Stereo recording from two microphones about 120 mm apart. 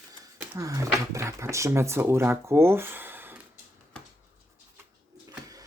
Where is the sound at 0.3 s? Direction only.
25° right (ahead or behind).